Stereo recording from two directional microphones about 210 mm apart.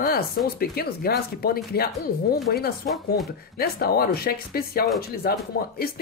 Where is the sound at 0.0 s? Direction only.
45° left (ahead or behind).